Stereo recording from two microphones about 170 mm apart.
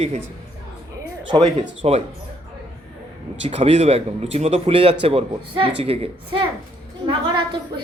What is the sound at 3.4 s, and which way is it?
A man's voice, 35° right (ahead or behind).